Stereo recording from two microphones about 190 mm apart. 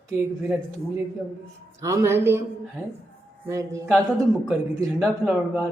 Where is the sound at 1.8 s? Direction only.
15° right (ahead or behind).